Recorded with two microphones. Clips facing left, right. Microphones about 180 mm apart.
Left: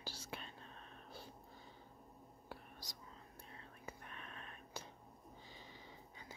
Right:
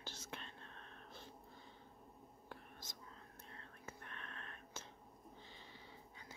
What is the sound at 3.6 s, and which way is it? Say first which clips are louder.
Whispering: left 2 dB; 10° left (ahead or behind).